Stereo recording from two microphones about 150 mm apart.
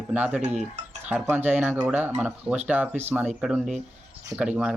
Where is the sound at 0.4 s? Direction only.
50° right (ahead or behind).